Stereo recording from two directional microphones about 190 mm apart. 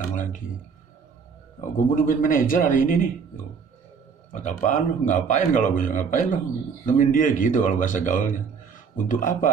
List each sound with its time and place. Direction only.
0.1 s speech: 45° left (ahead or behind)
1.6 s speech: 45° left (ahead or behind)
4.3 s a man's voice: 40° left (ahead or behind)